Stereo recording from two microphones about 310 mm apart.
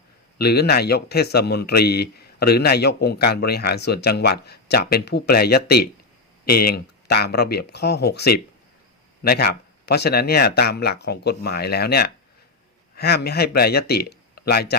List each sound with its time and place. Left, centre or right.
0.3 s a man's voice: left